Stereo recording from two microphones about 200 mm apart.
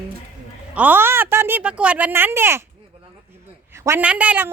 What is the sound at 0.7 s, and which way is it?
Speech, 10° right (ahead or behind).